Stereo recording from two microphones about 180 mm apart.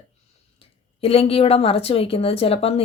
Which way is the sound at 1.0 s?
35° left (ahead or behind).